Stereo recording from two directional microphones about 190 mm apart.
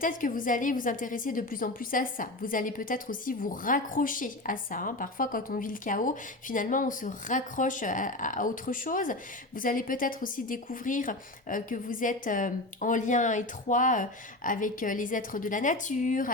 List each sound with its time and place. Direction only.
0.0 s a woman's voice: 45° left (ahead or behind)